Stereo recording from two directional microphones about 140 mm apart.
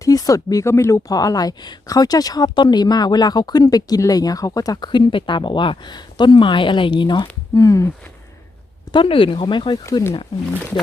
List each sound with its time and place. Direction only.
0.0 s speech: 25° left (ahead or behind)
7.5 s speech: 20° left (ahead or behind)
8.9 s speech: 35° left (ahead or behind)
9.8 s speech: 20° left (ahead or behind)